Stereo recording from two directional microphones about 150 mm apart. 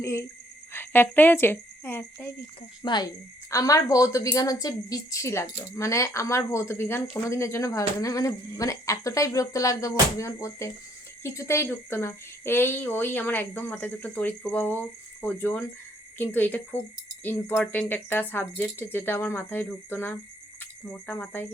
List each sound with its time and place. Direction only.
0.0 s a woman's voice: 20° left (ahead or behind)
2.8 s a woman's voice: 30° left (ahead or behind); by 21.4 s 10° left (ahead or behind)